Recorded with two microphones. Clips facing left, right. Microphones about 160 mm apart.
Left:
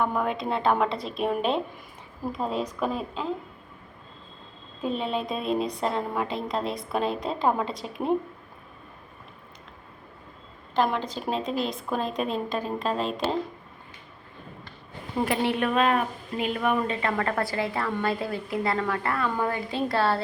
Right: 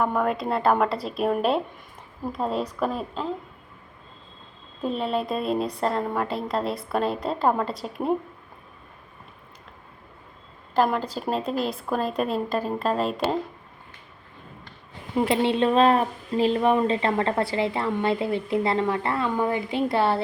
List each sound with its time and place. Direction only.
0.0 s a woman's voice: centre (ahead or behind)
4.8 s a woman's voice: centre (ahead or behind)
10.8 s a woman's voice: 5° right (ahead or behind)
15.2 s a woman's voice: 25° right (ahead or behind)